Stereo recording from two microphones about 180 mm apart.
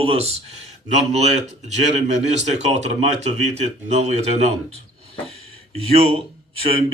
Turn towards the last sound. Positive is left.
turn(degrees=-30)  # may be behind; listen again after turning